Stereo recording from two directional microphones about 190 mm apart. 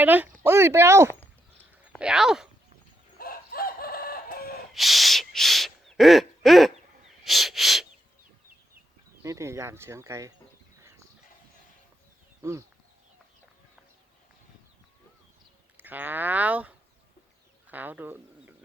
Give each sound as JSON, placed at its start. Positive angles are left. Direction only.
{"t": 0.0, "sound": "speech", "side_deg": -10}
{"t": 3.2, "sound": "chicken", "side_deg": 50}
{"t": 4.7, "sound": "a sound", "side_deg": 0}
{"t": 9.2, "sound": "speech", "side_deg": -15}
{"t": 12.4, "sound": "speech", "side_deg": -15}
{"t": 15.8, "sound": "speech", "side_deg": -10}